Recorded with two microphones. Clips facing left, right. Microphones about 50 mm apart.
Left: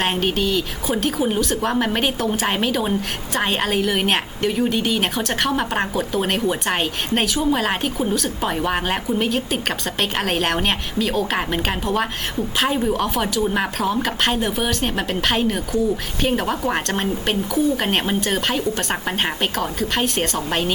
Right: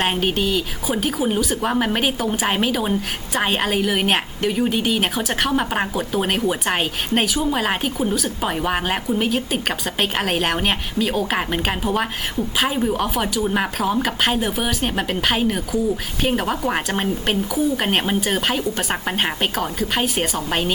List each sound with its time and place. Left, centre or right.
0.0 s a woman's voice: centre